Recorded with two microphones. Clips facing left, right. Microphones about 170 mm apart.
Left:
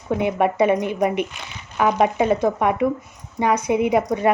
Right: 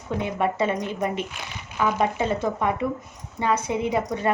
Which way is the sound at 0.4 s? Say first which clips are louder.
Left 6 dB; 15° left (ahead or behind).